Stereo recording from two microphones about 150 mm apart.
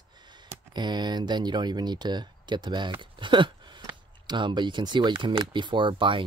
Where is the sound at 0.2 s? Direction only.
30° right (ahead or behind).